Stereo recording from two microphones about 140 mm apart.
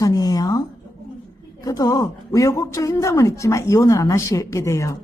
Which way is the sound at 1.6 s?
25° left (ahead or behind).